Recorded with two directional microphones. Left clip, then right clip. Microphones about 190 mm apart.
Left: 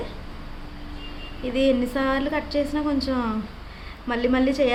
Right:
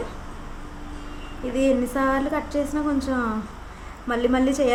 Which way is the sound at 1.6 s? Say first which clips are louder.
Even; 25° left (ahead or behind).